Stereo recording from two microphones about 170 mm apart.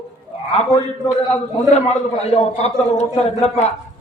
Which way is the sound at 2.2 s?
40° left (ahead or behind).